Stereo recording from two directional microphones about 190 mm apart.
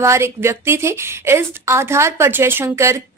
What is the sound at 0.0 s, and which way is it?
Speech, 15° right (ahead or behind).